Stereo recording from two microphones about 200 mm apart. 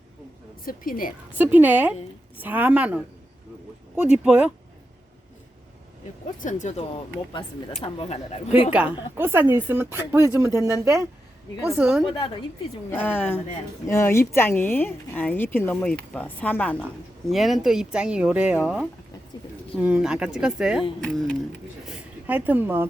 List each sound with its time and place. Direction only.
0.6 s a woman's voice: 45° left (ahead or behind)
1.4 s speech: 10° right (ahead or behind)
6.4 s speech: 40° left (ahead or behind)
8.7 s speech: 5° right (ahead or behind)
11.8 s speech: centre (ahead or behind)
12.0 s speech: 25° left (ahead or behind)
12.9 s speech: 10° left (ahead or behind)
21.8 s a sound: 5° right (ahead or behind)